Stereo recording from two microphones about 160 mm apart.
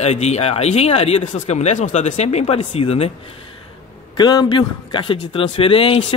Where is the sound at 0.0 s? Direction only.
45° left (ahead or behind).